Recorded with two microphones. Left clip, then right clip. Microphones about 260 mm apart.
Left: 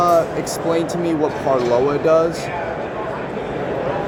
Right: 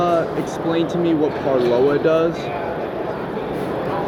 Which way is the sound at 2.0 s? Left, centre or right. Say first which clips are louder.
Left 2 dB; left.